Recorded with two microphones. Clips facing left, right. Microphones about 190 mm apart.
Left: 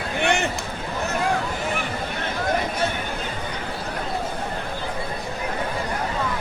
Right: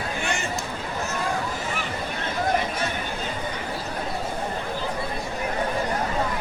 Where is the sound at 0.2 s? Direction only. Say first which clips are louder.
Left 10 dB; 65° left (ahead or behind).